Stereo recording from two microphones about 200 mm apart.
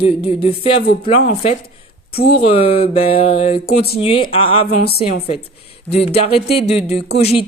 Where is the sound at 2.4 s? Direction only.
30° left (ahead or behind).